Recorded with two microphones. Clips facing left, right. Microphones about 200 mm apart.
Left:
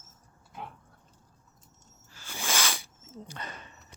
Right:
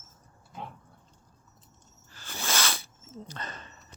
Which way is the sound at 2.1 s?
10° left (ahead or behind).